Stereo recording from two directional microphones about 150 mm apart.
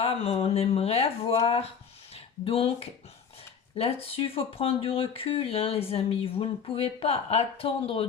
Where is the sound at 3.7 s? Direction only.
40° left (ahead or behind).